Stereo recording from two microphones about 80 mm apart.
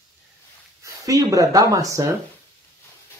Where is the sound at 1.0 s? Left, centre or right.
Right.